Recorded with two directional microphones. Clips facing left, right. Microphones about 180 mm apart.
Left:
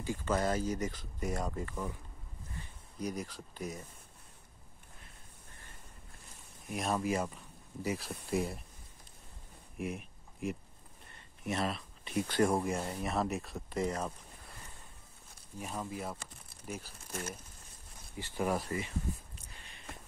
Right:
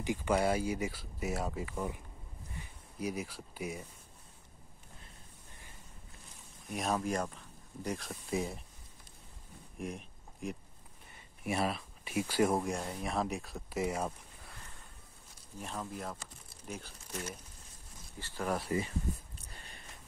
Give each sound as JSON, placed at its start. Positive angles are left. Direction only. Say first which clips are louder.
{"t": 0.0, "sound": "speech", "louder": "right 2 dB", "side_deg": -15}
{"t": 2.5, "sound": "a sound", "louder": "even", "side_deg": -10}
{"t": 6.7, "sound": "speech", "louder": "left 1 dB", "side_deg": 0}
{"t": 9.8, "sound": "a sound", "louder": "left 2 dB", "side_deg": 5}
{"t": 11.4, "sound": "speech", "louder": "right 1 dB", "side_deg": -5}
{"t": 15.6, "sound": "speech", "louder": "left 1 dB", "side_deg": 5}
{"t": 17.1, "sound": "speech", "louder": "even", "side_deg": 50}
{"t": 18.1, "sound": "speech", "louder": "left 4 dB", "side_deg": 15}
{"t": 18.7, "sound": "speech", "louder": "right 4 dB", "side_deg": -20}
{"t": 19.5, "sound": "a sound", "louder": "right 3 dB", "side_deg": -40}